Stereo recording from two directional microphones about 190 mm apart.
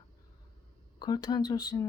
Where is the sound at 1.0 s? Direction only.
20° left (ahead or behind).